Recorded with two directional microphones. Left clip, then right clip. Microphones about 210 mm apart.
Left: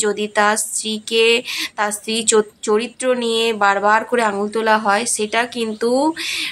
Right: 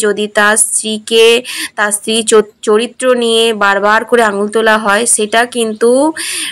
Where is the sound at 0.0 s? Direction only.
15° right (ahead or behind).